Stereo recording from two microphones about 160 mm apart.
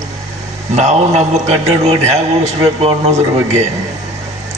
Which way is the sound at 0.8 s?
45° right (ahead or behind).